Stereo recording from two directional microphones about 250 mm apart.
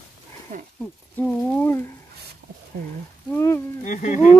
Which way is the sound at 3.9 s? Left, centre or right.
Left.